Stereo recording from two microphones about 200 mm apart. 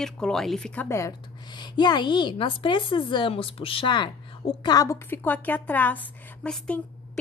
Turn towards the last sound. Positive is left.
turn(degrees=5)  # may be behind; listen again after turning